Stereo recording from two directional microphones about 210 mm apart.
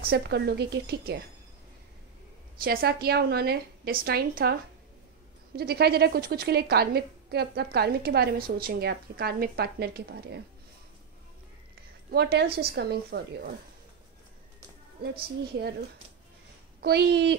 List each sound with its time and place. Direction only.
0.0 s a woman's voice: 50° right (ahead or behind)
2.6 s a woman's voice: 45° right (ahead or behind)
5.6 s a woman's voice: 50° right (ahead or behind)
12.1 s a woman's voice: 50° right (ahead or behind)
16.8 s a woman's voice: 50° right (ahead or behind)